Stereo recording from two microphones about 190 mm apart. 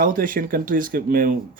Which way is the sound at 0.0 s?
45° right (ahead or behind).